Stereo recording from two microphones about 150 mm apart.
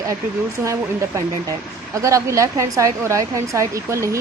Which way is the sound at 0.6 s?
20° right (ahead or behind).